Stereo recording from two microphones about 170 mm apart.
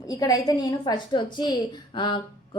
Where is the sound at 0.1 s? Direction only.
20° left (ahead or behind).